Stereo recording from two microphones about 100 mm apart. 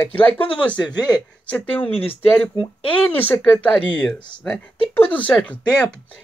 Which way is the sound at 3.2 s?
20° left (ahead or behind).